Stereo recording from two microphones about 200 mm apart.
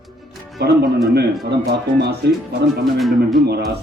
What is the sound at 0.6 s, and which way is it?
Speech, 55° right (ahead or behind).